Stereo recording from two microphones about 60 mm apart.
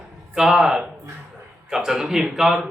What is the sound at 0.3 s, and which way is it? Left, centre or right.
A man's voice, centre.